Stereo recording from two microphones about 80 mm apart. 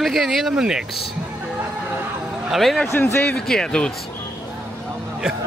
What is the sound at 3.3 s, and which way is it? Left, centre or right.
Speech, centre.